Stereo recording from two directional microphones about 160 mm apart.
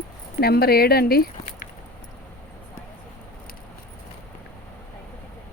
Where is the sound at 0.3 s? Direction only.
75° left (ahead or behind).